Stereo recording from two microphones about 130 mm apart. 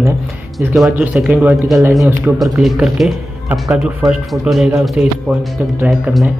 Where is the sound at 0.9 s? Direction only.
10° right (ahead or behind).